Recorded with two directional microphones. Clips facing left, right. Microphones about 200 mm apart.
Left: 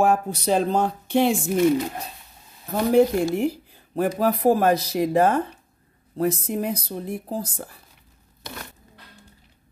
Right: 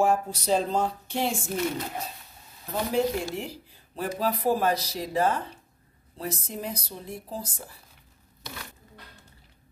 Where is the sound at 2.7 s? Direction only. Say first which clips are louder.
Left 8 dB; 55° left (ahead or behind).